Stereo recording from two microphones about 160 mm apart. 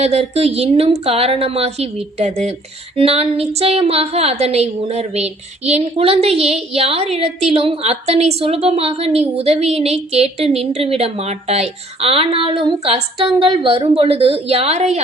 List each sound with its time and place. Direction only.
0.0 s a woman's voice: 40° right (ahead or behind)